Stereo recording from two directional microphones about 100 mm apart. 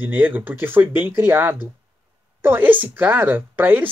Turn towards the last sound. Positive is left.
turn(degrees=-20)  # may be behind; listen again after turning